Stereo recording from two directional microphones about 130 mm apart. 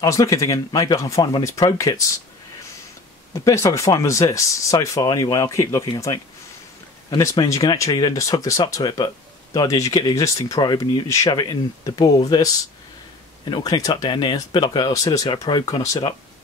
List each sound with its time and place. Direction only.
0.0 s speech: 25° left (ahead or behind)
3.4 s speech: 25° left (ahead or behind)
13.5 s speech: 30° left (ahead or behind)